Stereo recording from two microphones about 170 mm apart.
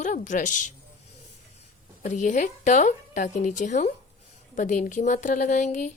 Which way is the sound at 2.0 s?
45° left (ahead or behind).